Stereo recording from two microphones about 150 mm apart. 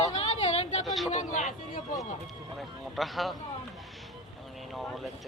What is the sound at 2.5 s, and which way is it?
Speech, centre (ahead or behind).